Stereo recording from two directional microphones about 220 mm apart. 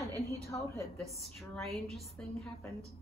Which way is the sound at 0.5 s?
15° left (ahead or behind).